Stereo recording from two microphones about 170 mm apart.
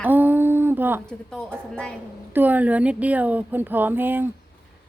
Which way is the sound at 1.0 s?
5° left (ahead or behind).